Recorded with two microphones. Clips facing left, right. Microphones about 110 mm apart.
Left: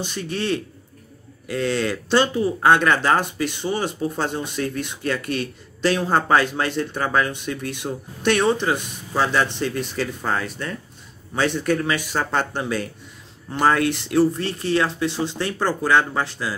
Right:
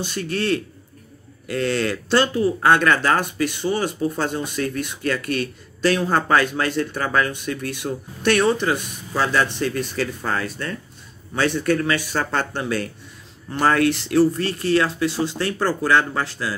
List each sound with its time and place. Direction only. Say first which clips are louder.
0.0 s speech: right 2 dB; 20° left (ahead or behind)